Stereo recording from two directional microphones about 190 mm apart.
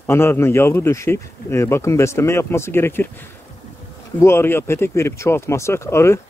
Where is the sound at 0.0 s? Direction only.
10° left (ahead or behind).